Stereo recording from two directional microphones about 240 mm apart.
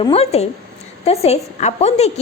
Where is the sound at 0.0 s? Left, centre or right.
Left.